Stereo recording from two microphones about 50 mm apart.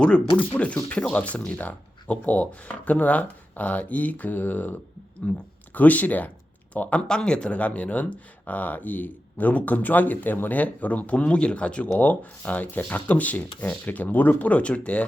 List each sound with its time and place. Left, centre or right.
0.5 s speech: left
5.2 s speech: left
7.1 s speech: centre